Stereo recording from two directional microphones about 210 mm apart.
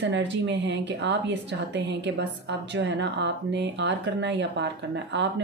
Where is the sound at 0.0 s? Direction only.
55° right (ahead or behind).